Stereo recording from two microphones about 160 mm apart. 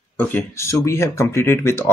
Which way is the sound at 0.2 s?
10° left (ahead or behind).